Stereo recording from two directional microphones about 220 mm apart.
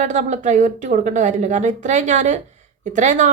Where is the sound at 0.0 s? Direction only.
35° right (ahead or behind).